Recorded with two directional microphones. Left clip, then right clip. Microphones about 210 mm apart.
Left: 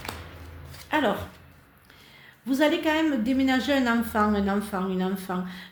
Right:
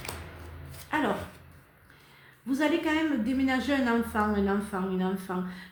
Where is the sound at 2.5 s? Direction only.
45° left (ahead or behind).